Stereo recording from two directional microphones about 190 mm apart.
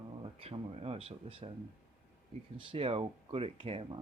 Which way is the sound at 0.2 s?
30° right (ahead or behind).